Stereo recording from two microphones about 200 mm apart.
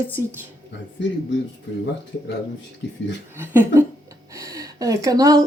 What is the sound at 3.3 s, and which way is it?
A woman's voice, 10° right (ahead or behind).